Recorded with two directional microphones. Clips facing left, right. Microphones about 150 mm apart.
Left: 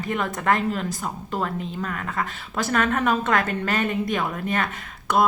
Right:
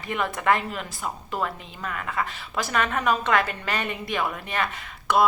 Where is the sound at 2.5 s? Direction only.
50° left (ahead or behind).